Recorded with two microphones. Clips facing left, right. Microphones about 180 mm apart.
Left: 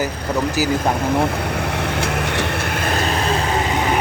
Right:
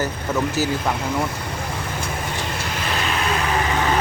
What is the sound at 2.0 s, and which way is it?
Vehicle, 75° left (ahead or behind).